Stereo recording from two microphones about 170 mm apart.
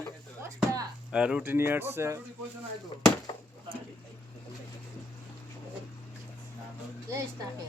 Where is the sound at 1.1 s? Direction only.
5° right (ahead or behind).